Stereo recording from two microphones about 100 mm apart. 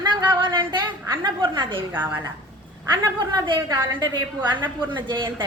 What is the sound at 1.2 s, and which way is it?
Speech, 50° right (ahead or behind).